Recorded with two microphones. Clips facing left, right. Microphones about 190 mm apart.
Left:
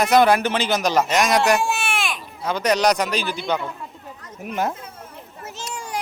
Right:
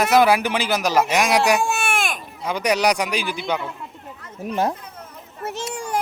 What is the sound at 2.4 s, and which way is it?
A man's voice, 10° right (ahead or behind).